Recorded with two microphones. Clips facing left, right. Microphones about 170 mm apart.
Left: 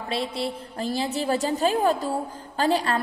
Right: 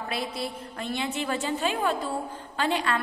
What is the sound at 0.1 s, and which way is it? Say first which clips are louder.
A woman's voice: left 6 dB; 30° left (ahead or behind).